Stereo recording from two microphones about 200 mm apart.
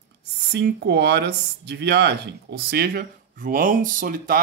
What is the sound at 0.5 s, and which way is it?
Speech, 55° right (ahead or behind).